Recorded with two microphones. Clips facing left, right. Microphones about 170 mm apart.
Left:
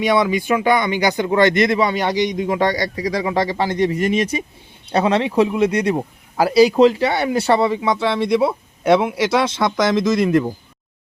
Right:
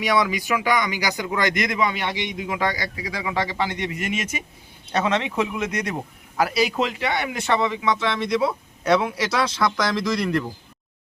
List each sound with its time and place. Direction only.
0.0 s speech: 25° left (ahead or behind)